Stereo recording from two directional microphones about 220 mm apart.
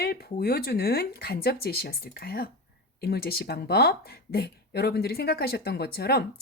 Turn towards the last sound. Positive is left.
turn(degrees=45)  # may be behind; listen again after turning